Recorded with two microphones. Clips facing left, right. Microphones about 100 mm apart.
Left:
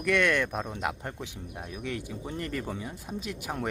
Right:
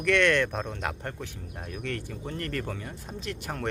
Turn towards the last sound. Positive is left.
turn(degrees=10)  # may be behind; listen again after turning